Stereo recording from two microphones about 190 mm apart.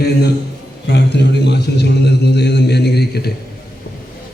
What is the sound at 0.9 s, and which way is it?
A man's voice, 65° left (ahead or behind).